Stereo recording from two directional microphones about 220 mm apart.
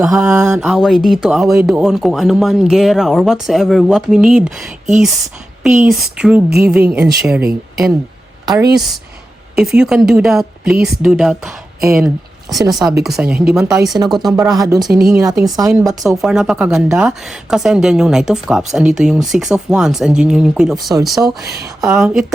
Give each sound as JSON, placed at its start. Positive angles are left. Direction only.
{"t": 0.0, "sound": "a woman's voice", "side_deg": 0}
{"t": 5.6, "sound": "a woman's voice", "side_deg": -5}
{"t": 8.7, "sound": "a woman's voice", "side_deg": 0}
{"t": 15.3, "sound": "a woman's voice", "side_deg": -15}
{"t": 16.0, "sound": "a woman's voice", "side_deg": -5}